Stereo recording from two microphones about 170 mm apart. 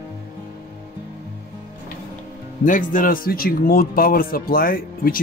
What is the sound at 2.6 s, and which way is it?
Speech, 50° left (ahead or behind).